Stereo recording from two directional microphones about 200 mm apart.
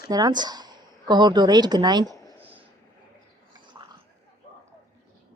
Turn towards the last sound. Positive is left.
turn(degrees=-20)  # may be behind; listen again after turning